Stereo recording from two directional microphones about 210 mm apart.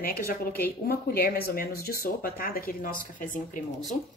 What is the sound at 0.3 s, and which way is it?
A woman's voice, 45° left (ahead or behind).